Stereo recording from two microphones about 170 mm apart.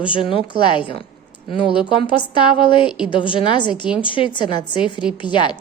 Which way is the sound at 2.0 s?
30° left (ahead or behind).